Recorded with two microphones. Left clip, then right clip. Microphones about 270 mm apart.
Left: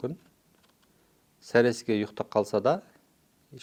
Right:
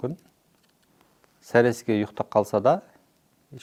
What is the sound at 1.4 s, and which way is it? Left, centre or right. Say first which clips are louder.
Speech: right 3 dB; right.